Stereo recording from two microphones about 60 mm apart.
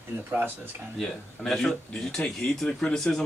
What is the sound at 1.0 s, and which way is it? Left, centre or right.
A man's voice, centre.